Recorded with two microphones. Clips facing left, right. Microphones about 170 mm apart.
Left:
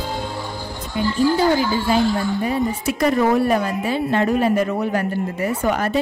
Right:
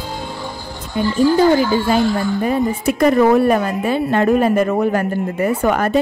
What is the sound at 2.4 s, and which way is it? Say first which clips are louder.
Speech: right 4 dB; 50° right (ahead or behind).